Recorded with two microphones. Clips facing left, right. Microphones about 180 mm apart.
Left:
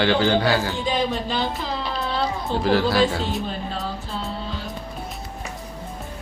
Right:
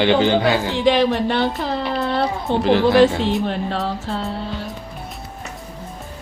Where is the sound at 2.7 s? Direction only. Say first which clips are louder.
Right 5 dB; 20° right (ahead or behind).